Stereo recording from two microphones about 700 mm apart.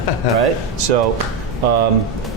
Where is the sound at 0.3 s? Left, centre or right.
Right.